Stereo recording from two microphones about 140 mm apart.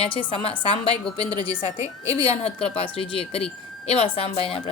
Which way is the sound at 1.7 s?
20° right (ahead or behind).